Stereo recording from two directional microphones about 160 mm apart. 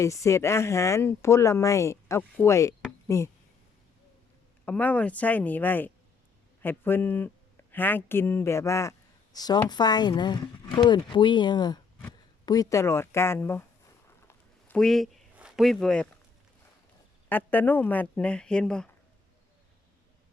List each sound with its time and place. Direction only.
0.0 s speech: 20° left (ahead or behind)
4.6 s speech: 10° left (ahead or behind)
14.3 s a sound: 5° left (ahead or behind)
17.2 s speech: 10° left (ahead or behind)